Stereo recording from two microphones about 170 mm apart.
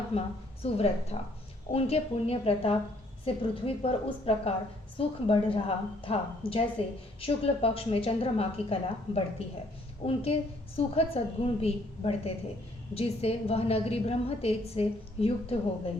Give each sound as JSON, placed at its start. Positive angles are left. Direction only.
{"t": 0.1, "sound": "a woman's voice", "side_deg": 35}